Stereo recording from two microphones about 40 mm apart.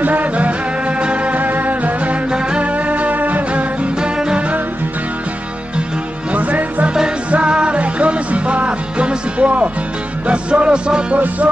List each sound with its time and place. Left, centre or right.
0.0 s music: right
1.4 s music: right
4.0 s music: right
6.3 s music: right